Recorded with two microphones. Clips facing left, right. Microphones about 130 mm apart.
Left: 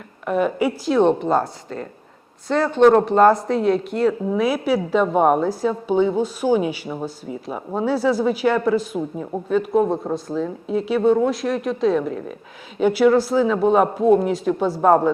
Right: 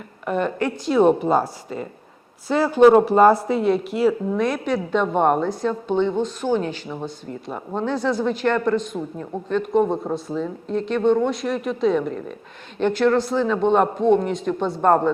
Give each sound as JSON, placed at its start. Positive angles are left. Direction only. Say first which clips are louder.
{"t": 0.3, "sound": "a woman's voice", "louder": "left 3 dB", "side_deg": 5}